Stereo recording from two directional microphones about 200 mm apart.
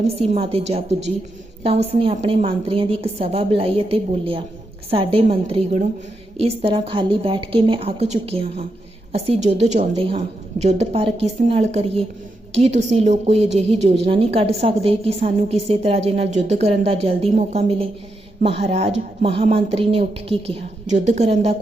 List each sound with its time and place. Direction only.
0.2 s a woman's voice: 30° right (ahead or behind)